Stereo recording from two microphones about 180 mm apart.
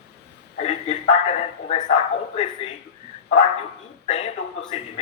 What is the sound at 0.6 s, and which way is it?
A man's voice, 35° left (ahead or behind).